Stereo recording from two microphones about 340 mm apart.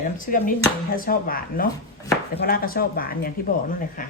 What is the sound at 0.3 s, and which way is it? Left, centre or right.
Speech, left.